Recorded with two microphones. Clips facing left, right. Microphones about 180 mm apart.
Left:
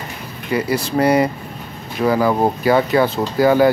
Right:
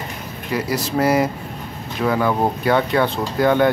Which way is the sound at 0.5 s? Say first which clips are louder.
Left 3 dB; centre (ahead or behind).